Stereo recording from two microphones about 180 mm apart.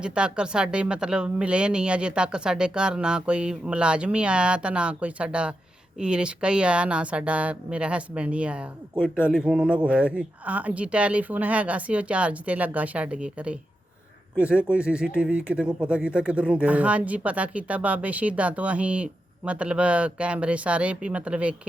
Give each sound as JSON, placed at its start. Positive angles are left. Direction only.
{"t": 0.0, "sound": "speech", "side_deg": -5}
{"t": 9.0, "sound": "speech", "side_deg": 10}
{"t": 9.3, "sound": "speech", "side_deg": -5}